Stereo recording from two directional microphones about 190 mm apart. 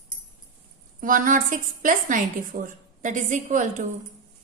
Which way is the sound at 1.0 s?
45° right (ahead or behind).